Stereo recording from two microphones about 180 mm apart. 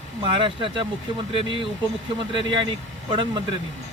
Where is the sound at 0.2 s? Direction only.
30° right (ahead or behind).